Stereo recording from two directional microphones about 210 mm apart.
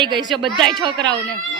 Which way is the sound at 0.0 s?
20° right (ahead or behind).